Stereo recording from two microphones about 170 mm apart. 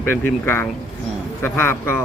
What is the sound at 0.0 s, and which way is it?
A man's voice, 15° left (ahead or behind).